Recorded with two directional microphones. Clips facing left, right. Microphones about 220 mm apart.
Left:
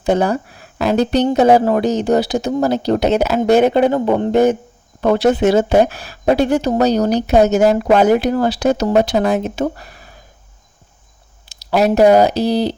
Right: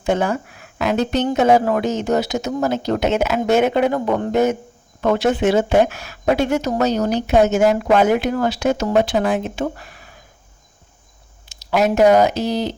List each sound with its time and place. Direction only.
0.0 s speech: 40° left (ahead or behind)
11.4 s speech: 35° left (ahead or behind)